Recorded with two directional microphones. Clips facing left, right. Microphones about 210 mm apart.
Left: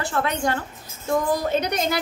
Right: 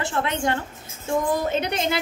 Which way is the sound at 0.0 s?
20° right (ahead or behind).